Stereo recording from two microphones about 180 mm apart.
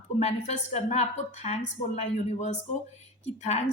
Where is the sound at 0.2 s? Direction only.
40° left (ahead or behind).